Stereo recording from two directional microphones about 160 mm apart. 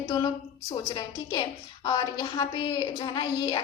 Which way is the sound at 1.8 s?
25° left (ahead or behind).